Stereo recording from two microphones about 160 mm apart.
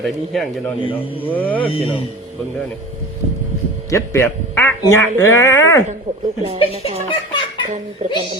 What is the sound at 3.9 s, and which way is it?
Speech, 15° left (ahead or behind).